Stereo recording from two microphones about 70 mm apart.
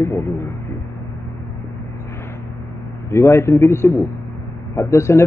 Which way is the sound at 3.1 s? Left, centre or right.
Left.